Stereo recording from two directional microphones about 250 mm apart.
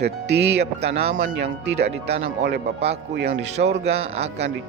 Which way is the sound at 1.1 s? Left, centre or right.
Right.